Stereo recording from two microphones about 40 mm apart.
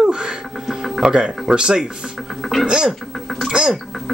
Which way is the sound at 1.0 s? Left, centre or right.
Centre.